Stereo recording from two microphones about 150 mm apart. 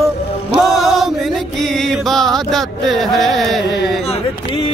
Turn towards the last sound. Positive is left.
turn(degrees=0)  # may be behind; listen again after turning